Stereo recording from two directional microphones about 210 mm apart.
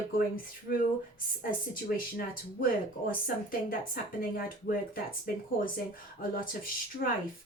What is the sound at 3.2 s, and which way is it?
Speech, 40° left (ahead or behind).